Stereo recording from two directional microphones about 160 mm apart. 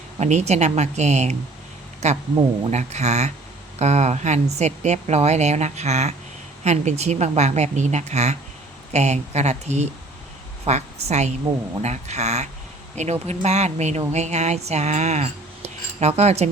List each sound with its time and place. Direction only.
0.2 s speech: 45° right (ahead or behind)